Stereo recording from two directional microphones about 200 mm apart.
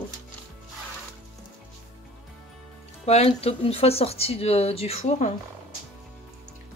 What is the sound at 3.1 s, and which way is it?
Speech, 30° left (ahead or behind).